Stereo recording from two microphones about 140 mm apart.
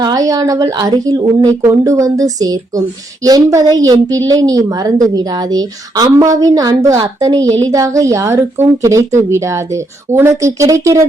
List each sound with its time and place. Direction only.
0.0 s speech: 25° right (ahead or behind)